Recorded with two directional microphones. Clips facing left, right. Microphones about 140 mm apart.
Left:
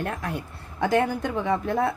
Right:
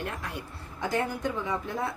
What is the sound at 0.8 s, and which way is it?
A woman's voice, 65° left (ahead or behind).